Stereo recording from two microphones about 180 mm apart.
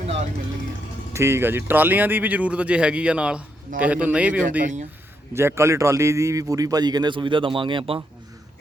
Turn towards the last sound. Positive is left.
turn(degrees=-30)  # may be behind; listen again after turning